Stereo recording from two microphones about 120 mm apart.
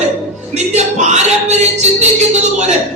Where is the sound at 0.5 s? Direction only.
75° right (ahead or behind).